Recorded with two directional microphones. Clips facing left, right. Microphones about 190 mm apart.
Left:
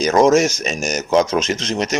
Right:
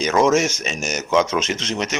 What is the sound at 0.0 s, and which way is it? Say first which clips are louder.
Speech: left 4 dB; 35° left (ahead or behind).